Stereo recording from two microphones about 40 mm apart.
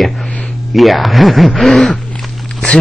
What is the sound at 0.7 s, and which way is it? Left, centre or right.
A man's voice, centre.